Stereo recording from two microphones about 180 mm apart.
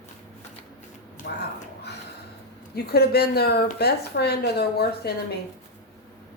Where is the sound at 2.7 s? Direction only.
60° left (ahead or behind).